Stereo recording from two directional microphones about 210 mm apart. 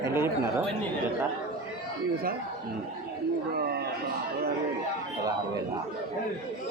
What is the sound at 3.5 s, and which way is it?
Speech, 45° right (ahead or behind).